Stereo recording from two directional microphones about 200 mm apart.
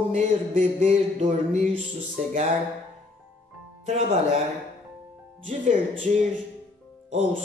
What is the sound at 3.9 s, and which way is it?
Speech, 35° right (ahead or behind).